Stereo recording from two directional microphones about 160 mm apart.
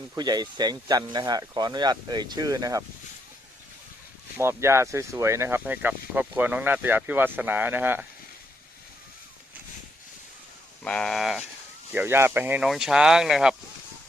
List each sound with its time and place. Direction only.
0.2 s speech: 25° right (ahead or behind)
4.4 s speech: 15° right (ahead or behind)
10.8 s speech: 5° left (ahead or behind)
11.9 s speech: 10° right (ahead or behind)